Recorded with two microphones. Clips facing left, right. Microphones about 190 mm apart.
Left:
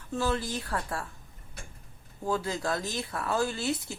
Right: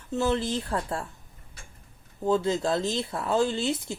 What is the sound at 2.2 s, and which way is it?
Speech, 25° right (ahead or behind).